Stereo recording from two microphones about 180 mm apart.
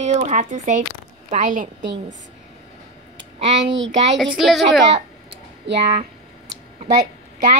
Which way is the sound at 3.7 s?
90° right.